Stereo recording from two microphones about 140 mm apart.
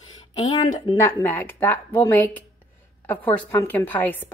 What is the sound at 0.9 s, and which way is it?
A woman's voice, 15° left (ahead or behind).